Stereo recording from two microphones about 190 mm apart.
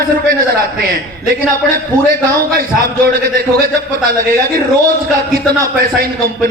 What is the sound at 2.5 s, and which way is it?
A man's voice, 50° right (ahead or behind).